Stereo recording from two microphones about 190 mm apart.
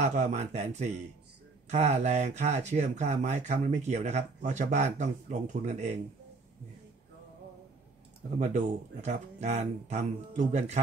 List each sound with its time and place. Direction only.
0.0 s speech: 40° right (ahead or behind)
8.4 s speech: 35° right (ahead or behind)